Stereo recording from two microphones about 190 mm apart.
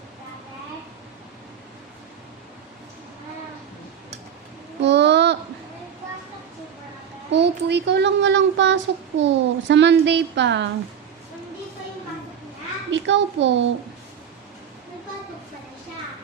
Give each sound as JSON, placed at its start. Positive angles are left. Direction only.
{"t": 4.8, "sound": "child singing", "side_deg": -65}
{"t": 7.3, "sound": "speech", "side_deg": -65}
{"t": 12.9, "sound": "a child's voice", "side_deg": -70}